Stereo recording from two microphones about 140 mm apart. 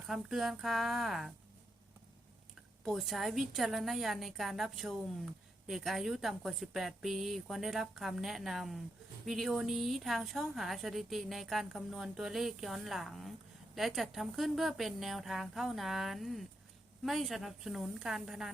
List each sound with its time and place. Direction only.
0.1 s a woman's voice: centre (ahead or behind)
2.8 s a woman's voice: centre (ahead or behind)